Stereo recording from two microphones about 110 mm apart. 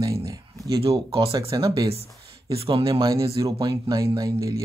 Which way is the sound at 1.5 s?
40° right (ahead or behind).